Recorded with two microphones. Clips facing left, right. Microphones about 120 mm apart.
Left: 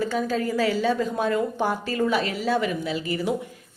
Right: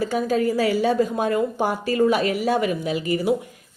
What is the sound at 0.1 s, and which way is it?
A woman's voice, 15° right (ahead or behind).